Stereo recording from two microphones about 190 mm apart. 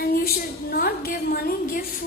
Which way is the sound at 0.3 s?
50° left (ahead or behind).